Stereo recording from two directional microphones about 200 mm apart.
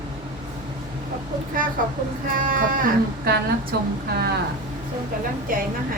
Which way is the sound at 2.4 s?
45° right (ahead or behind).